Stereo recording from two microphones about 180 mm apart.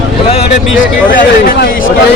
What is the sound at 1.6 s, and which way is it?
Speech, 70° left (ahead or behind).